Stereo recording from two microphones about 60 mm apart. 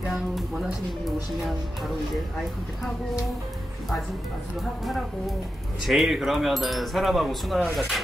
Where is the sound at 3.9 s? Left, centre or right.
Centre.